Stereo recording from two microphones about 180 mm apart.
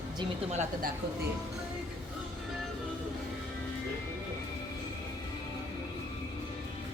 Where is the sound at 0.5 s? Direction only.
40° right (ahead or behind).